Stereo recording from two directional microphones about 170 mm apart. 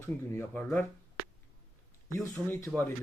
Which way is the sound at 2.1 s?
15° left (ahead or behind).